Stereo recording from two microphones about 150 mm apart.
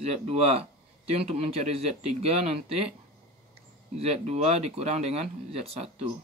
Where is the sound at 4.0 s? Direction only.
45° right (ahead or behind).